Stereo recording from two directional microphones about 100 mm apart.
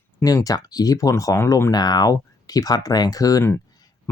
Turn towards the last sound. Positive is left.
turn(degrees=35)  # may be behind; listen again after turning